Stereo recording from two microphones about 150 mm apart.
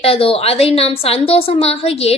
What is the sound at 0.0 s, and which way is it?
A woman's voice, 40° left (ahead or behind).